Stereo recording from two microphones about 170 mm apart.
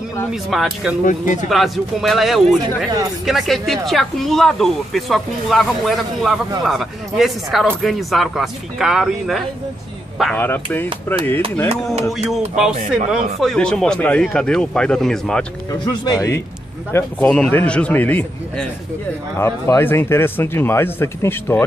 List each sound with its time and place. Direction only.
0.3 s speech: centre (ahead or behind)
1.0 s speech: 45° left (ahead or behind)
1.5 s speech: centre (ahead or behind)
10.4 s speech: 10° left (ahead or behind)
12.3 s speech: 5° right (ahead or behind)
15.8 s speech: 20° left (ahead or behind)
16.9 s speech: 10° left (ahead or behind)